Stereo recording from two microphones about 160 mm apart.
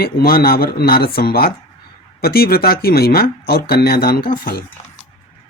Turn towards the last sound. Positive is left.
turn(degrees=65)  # may be behind; listen again after turning